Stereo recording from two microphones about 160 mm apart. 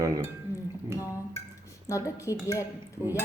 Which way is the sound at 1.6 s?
20° left (ahead or behind).